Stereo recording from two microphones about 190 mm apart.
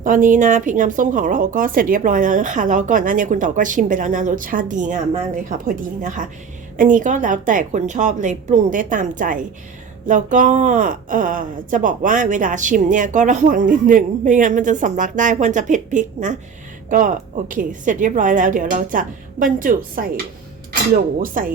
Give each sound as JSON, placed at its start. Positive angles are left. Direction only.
{"t": 0.0, "sound": "speech", "side_deg": -40}